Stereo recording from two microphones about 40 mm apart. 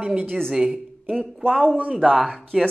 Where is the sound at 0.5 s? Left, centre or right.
Centre.